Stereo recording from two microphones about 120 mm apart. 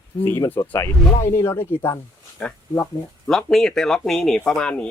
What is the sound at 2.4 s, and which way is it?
Speech, 10° left (ahead or behind).